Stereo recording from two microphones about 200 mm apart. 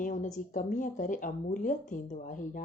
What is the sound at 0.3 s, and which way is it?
Speech, 40° left (ahead or behind).